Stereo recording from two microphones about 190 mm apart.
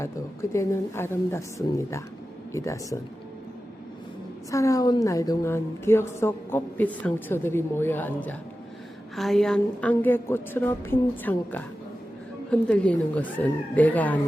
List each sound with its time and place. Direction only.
0.5 s a woman's voice: 15° left (ahead or behind)
4.5 s a woman's voice: 15° left (ahead or behind)